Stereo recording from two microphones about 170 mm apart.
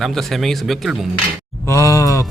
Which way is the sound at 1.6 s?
15° left (ahead or behind).